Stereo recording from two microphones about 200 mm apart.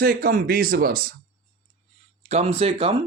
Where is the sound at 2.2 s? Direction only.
35° right (ahead or behind).